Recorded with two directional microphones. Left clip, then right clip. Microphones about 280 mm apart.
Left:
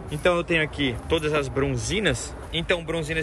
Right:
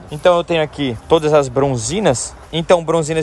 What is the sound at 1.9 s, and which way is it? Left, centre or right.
Speech, right.